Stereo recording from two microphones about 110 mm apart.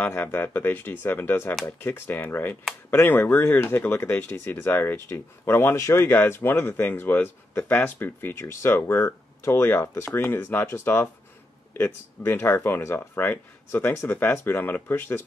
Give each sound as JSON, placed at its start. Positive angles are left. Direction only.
{"t": 0.0, "sound": "speech", "side_deg": 20}